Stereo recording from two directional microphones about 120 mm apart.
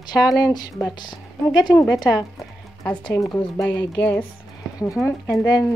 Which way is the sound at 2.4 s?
10° left (ahead or behind).